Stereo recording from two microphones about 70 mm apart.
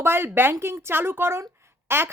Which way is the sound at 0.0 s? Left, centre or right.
Right.